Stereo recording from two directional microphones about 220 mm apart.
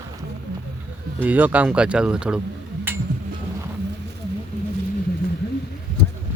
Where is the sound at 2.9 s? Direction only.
10° right (ahead or behind).